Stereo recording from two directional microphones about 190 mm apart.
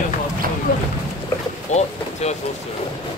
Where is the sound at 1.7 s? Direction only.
35° left (ahead or behind).